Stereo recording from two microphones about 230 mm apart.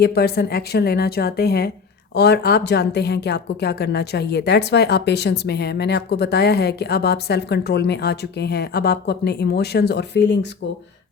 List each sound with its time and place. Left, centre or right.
0.0 s speech: left